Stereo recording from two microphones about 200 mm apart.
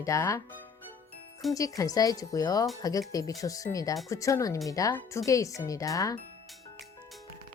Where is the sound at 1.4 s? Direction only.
Centre (ahead or behind).